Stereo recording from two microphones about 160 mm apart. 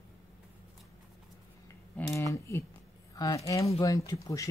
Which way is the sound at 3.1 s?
20° left (ahead or behind).